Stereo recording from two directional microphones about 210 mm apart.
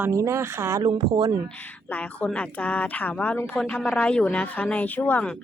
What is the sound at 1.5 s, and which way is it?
A woman's voice, 5° left (ahead or behind).